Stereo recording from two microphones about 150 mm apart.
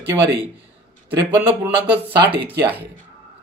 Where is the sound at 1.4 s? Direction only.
15° right (ahead or behind).